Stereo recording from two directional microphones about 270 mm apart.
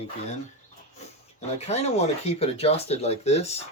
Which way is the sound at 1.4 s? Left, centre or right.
Left.